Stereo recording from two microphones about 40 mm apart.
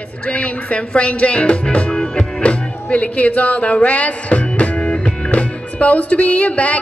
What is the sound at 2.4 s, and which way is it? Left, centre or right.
Music, left.